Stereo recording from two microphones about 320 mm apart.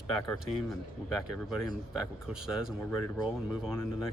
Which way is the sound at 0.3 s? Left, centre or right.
Centre.